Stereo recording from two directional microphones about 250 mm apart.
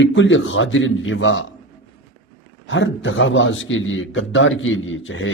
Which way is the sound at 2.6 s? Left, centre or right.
Left.